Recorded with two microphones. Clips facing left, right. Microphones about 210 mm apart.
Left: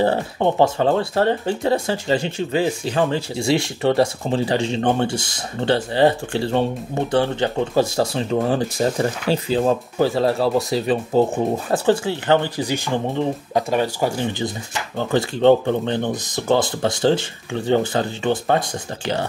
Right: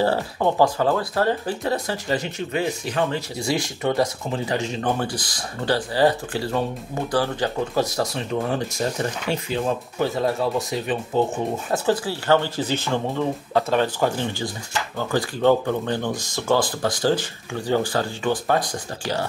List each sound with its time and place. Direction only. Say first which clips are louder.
0.0 s speech: left 2 dB; 20° left (ahead or behind)